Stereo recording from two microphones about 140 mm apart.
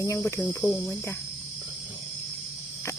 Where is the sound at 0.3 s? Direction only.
Centre (ahead or behind).